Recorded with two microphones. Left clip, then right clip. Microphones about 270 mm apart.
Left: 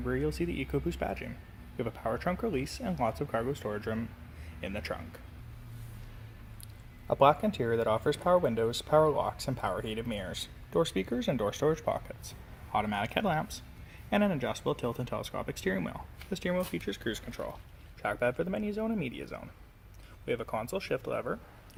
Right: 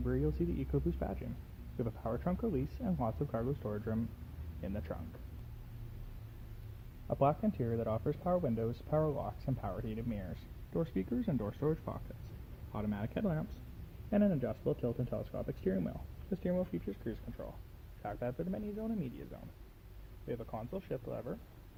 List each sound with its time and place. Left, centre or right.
0.0 s speech: centre
7.1 s speech: centre